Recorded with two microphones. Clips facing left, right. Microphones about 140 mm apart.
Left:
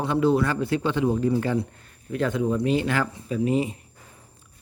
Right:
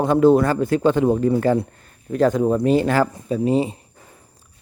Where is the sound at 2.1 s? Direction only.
40° right (ahead or behind).